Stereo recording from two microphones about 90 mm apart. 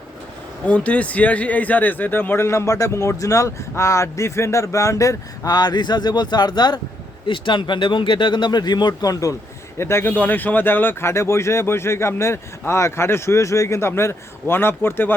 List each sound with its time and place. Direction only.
0.7 s speech: 15° left (ahead or behind); by 6.7 s 50° left (ahead or behind)
7.3 s speech: 65° left (ahead or behind); by 9.3 s 45° left (ahead or behind)
9.7 s speech: 30° left (ahead or behind)